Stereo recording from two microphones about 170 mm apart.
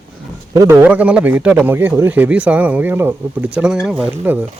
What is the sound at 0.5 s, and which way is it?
A man's voice, 15° right (ahead or behind).